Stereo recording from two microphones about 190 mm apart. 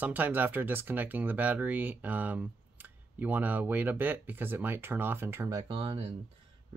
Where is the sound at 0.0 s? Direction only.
10° right (ahead or behind).